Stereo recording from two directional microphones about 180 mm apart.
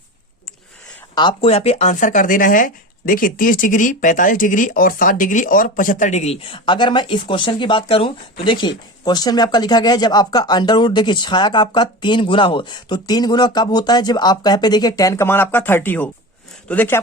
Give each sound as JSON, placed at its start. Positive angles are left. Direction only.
{"t": 1.1, "sound": "speech", "side_deg": 25}